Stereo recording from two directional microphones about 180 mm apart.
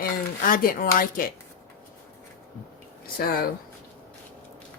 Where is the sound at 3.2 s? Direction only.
55° left (ahead or behind).